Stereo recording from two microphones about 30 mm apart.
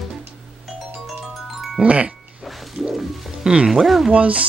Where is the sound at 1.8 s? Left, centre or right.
Right.